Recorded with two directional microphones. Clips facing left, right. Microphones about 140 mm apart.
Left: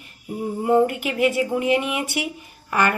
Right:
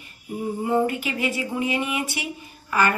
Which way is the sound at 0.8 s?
65° left (ahead or behind).